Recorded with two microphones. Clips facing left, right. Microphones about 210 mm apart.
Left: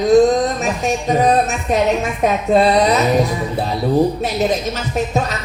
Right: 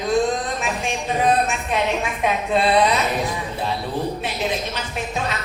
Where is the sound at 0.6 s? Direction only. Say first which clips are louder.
Left 6 dB; 40° left (ahead or behind).